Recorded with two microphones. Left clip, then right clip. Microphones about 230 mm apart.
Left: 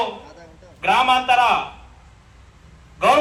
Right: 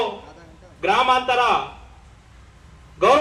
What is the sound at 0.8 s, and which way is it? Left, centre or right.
Speech, left.